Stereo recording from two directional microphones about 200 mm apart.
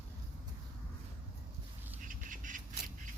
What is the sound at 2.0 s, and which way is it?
Duck, 40° right (ahead or behind).